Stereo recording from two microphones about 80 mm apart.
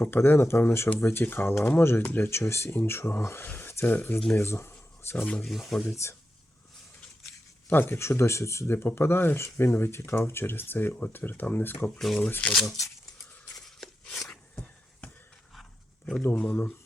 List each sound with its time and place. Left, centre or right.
0.0 s speech: left
4.7 s a sound: left
5.4 s speech: centre
5.9 s speech: left
7.7 s speech: left
11.9 s speech: centre
12.6 s speech: left
13.6 s a sound: centre